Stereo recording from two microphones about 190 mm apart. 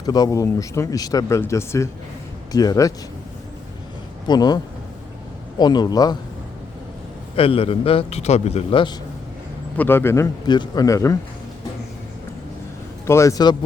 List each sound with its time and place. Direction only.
0.0 s a man's voice: 20° left (ahead or behind)
4.3 s a man's voice: 20° left (ahead or behind)
7.3 s a man's voice: 30° left (ahead or behind)
9.7 s speech: 10° left (ahead or behind)
13.1 s speech: 15° left (ahead or behind)